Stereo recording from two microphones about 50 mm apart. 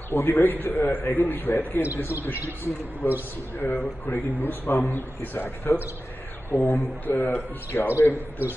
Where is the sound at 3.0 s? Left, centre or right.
Left.